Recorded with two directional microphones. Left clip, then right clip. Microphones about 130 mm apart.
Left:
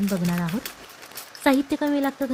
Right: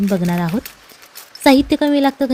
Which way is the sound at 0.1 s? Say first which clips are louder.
Right 8 dB; 70° right (ahead or behind).